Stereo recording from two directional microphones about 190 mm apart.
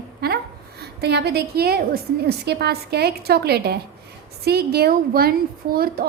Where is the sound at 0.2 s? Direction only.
55° right (ahead or behind).